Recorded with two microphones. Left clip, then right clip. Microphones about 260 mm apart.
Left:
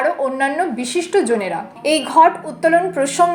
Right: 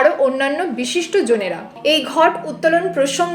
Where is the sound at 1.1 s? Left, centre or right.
Left.